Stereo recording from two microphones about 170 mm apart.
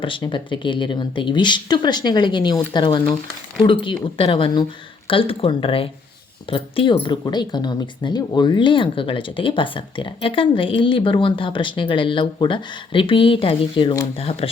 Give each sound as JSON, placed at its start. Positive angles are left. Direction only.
{"t": 0.0, "sound": "speech", "side_deg": 30}